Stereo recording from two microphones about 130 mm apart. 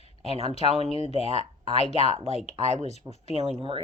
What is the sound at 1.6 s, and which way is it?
Speech, 50° left (ahead or behind).